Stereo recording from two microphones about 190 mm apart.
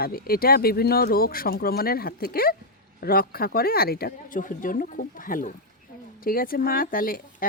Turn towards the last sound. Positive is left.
turn(degrees=50)  # may be behind; listen again after turning